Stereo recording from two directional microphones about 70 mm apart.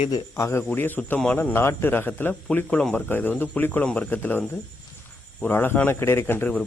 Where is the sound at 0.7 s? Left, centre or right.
Left.